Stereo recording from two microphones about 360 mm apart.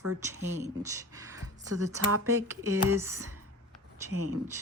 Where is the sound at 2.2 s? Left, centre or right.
Centre.